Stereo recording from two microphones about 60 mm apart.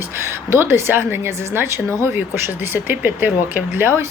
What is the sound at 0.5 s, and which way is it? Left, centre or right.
Speech, right.